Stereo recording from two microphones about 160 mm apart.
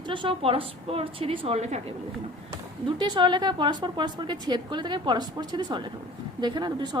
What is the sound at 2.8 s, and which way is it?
A woman's voice, 25° right (ahead or behind).